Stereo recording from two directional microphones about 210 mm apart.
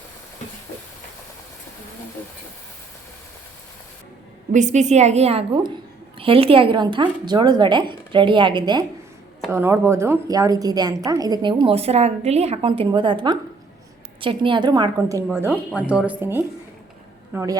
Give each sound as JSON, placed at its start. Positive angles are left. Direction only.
{"t": 4.5, "sound": "a woman's voice", "side_deg": -35}